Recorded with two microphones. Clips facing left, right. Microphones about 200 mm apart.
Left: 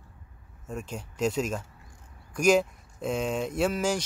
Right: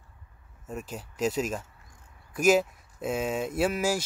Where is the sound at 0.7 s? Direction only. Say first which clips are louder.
Left 1 dB; 5° right (ahead or behind).